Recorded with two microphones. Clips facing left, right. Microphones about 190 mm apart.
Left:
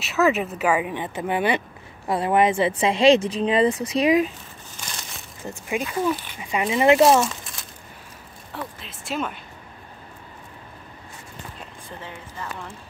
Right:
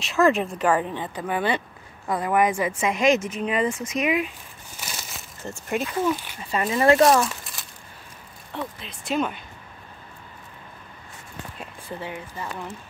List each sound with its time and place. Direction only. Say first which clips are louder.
0.0 s a woman's voice: right 1 dB; 5° left (ahead or behind); by 4.3 s 35° left (ahead or behind)
4.7 s crushing: right 1 dB; 5° right (ahead or behind)
5.7 s speech: even; 5° left (ahead or behind)
6.4 s speech: left 1 dB; 15° left (ahead or behind)
7.0 s speech: left 1 dB; centre (ahead or behind)
8.8 s speech: right 4 dB; centre (ahead or behind)
12.0 s speech: right 2 dB; 15° right (ahead or behind)